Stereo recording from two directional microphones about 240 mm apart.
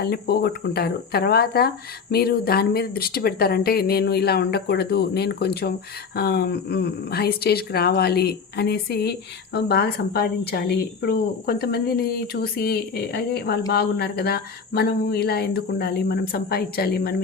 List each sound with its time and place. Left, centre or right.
0.0 s speech: left